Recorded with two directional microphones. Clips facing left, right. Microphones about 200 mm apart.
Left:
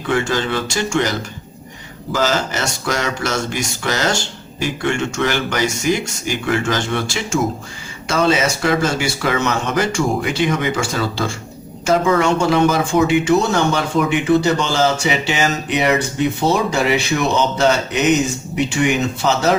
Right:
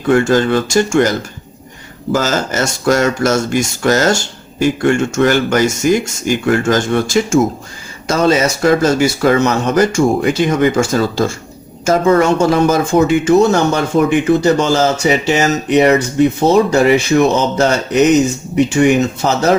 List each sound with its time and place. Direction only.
0.1 s speech: 45° right (ahead or behind)
2.1 s speech: 45° right (ahead or behind)